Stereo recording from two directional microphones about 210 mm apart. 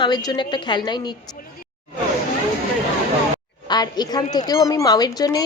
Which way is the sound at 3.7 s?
20° left (ahead or behind).